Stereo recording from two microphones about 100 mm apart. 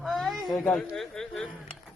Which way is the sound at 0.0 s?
Centre (ahead or behind).